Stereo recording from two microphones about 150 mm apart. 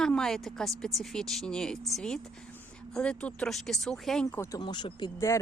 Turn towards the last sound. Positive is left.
turn(degrees=20)  # may be behind; listen again after turning